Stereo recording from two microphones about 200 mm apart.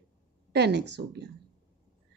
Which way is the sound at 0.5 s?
55° right (ahead or behind).